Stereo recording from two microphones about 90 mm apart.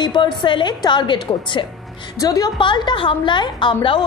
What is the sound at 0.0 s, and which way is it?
A woman's voice, 60° left (ahead or behind).